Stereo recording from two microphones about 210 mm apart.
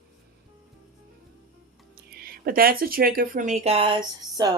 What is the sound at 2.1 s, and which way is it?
Speech, 45° right (ahead or behind).